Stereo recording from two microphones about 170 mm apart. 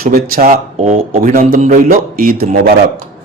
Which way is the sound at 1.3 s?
50° right (ahead or behind).